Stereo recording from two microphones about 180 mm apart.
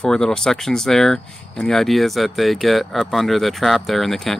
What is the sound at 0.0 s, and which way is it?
Speech, 5° left (ahead or behind).